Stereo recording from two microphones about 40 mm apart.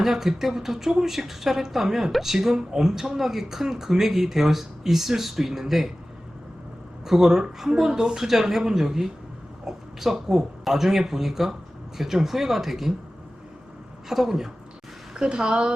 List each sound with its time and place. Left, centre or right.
0.0 s speech: centre
7.0 s a woman's voice: centre
14.1 s speech: centre
15.1 s a woman's voice: right